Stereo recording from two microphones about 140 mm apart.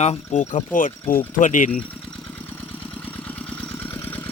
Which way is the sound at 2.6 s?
10° left (ahead or behind).